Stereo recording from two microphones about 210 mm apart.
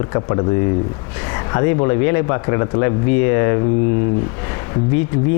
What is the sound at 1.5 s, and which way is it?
A man's voice, 20° left (ahead or behind).